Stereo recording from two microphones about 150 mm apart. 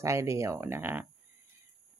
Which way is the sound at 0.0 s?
20° right (ahead or behind).